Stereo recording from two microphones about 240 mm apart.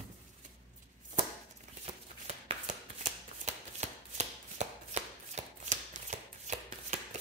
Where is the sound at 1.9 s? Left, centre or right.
Right.